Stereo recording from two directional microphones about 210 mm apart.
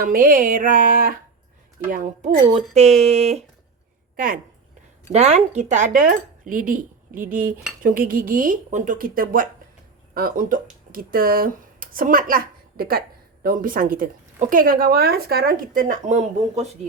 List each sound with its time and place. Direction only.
0.0 s speech: 40° right (ahead or behind)
5.1 s a woman's voice: 30° right (ahead or behind)